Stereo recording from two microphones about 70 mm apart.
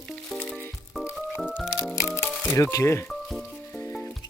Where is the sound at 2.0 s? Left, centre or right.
Left.